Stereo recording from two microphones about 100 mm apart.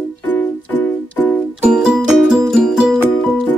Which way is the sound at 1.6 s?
10° right (ahead or behind).